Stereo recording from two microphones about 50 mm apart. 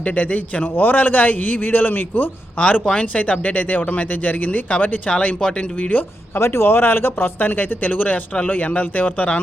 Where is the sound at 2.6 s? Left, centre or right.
Left.